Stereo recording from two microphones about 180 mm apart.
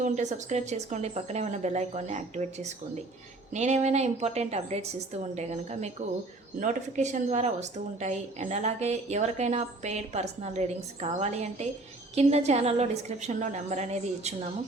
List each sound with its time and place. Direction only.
0.0 s a woman's voice: 40° right (ahead or behind)